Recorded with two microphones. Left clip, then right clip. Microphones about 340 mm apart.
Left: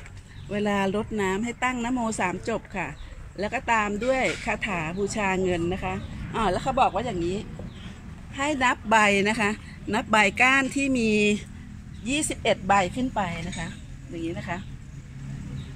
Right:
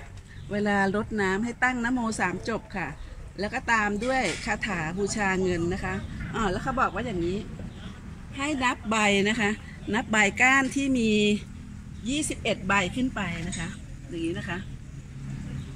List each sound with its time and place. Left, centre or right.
0.5 s speech: centre
8.4 s speech: centre